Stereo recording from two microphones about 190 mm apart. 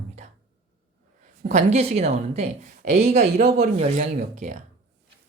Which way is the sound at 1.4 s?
35° right (ahead or behind).